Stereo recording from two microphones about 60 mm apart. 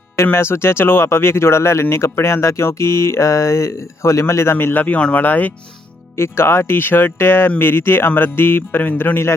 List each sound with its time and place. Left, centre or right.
0.3 s speech: left
4.5 s speech: left
4.9 s speech: centre
5.2 s speech: left
6.1 s speech: left